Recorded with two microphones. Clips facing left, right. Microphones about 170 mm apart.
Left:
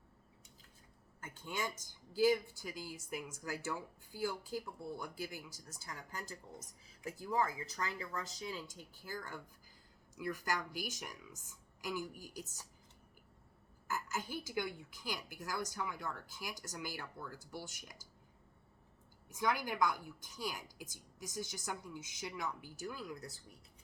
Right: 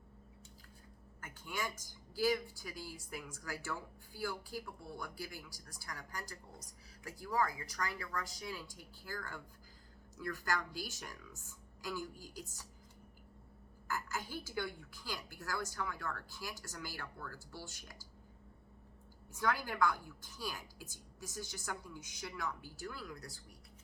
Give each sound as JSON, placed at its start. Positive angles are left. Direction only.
{"t": 1.2, "sound": "a woman's voice", "side_deg": 25}
{"t": 13.8, "sound": "a woman's voice", "side_deg": 20}
{"t": 19.3, "sound": "a woman's voice", "side_deg": 15}